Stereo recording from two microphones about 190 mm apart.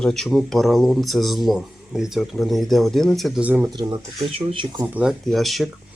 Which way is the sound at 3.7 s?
25° right (ahead or behind).